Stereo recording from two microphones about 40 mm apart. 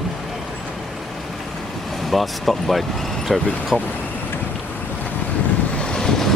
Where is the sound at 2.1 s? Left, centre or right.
Centre.